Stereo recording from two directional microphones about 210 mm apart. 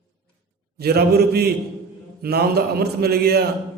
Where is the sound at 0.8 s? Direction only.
50° right (ahead or behind).